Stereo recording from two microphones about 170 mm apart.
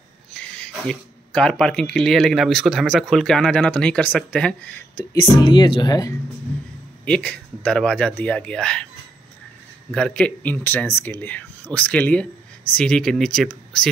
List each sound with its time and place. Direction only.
0.3 s speech: 5° left (ahead or behind)
4.9 s speech: 25° left (ahead or behind)
7.1 s speech: 5° left (ahead or behind)
9.8 s speech: 5° left (ahead or behind)